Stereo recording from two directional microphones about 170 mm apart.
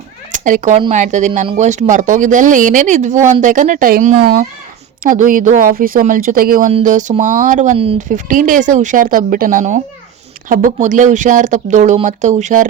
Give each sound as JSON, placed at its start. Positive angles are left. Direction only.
{"t": 0.3, "sound": "speech", "side_deg": -50}
{"t": 6.7, "sound": "speech", "side_deg": -45}